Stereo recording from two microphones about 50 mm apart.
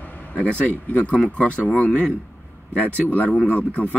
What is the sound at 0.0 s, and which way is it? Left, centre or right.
Speech, left.